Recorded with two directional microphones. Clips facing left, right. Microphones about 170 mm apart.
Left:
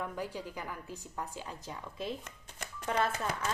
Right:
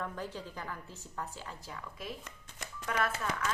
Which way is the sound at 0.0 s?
10° left (ahead or behind).